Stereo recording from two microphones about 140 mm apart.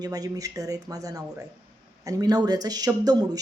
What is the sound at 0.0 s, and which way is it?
A woman's voice, 25° right (ahead or behind).